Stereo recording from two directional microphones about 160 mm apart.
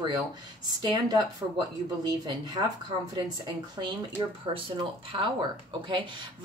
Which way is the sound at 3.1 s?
25° right (ahead or behind).